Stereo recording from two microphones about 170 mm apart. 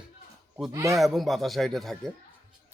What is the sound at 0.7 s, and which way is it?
Speech, 20° right (ahead or behind).